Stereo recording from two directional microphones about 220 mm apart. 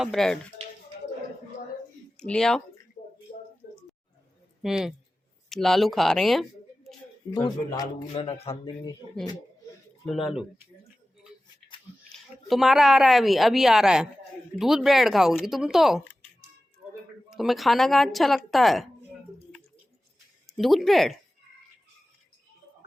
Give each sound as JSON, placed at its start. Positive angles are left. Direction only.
{"t": 0.0, "sound": "a woman's voice", "side_deg": 0}
{"t": 2.1, "sound": "speech", "side_deg": 5}
{"t": 4.6, "sound": "a woman's voice", "side_deg": 0}
{"t": 7.3, "sound": "a man's voice", "side_deg": 20}
{"t": 10.1, "sound": "a woman's voice", "side_deg": 0}
{"t": 12.0, "sound": "a woman's voice", "side_deg": 0}
{"t": 17.2, "sound": "a woman's voice", "side_deg": 0}
{"t": 20.6, "sound": "a woman's voice", "side_deg": 0}